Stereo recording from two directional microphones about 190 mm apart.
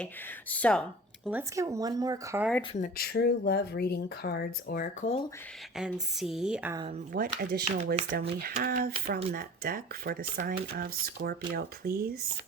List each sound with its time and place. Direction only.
0.5 s speech: 5° left (ahead or behind)
1.3 s speech: 15° right (ahead or behind)
2.7 s speech: 45° left (ahead or behind)
5.7 s speech: centre (ahead or behind)
7.1 s speech: 50° right (ahead or behind)